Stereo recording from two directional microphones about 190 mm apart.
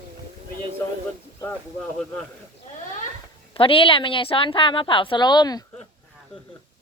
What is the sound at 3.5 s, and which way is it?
A woman's voice, 30° left (ahead or behind).